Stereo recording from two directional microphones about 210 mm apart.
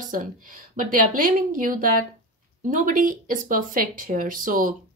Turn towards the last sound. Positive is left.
turn(degrees=-40)  # may be behind; listen again after turning